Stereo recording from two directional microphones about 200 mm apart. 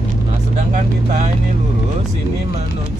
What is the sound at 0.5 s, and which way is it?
Vehicle, 35° right (ahead or behind).